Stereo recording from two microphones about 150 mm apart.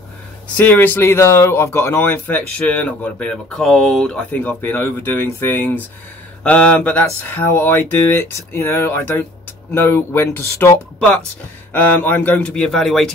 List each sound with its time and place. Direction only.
0.6 s speech: 10° left (ahead or behind)